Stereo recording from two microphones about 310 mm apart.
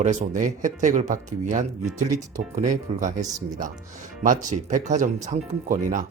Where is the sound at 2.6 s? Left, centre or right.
Right.